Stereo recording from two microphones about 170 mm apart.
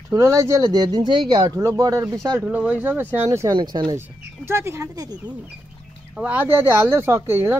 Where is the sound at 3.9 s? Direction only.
15° right (ahead or behind).